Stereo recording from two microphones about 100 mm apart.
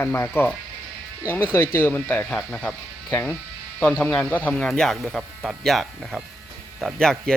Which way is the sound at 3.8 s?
15° left (ahead or behind).